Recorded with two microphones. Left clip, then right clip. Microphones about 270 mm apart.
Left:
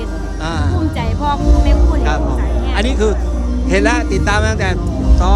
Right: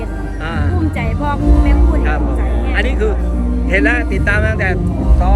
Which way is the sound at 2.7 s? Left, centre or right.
Centre.